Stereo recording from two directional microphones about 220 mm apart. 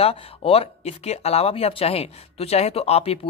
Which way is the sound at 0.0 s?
25° left (ahead or behind).